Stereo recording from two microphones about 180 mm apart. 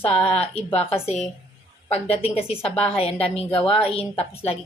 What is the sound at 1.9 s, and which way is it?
Speech, 35° left (ahead or behind).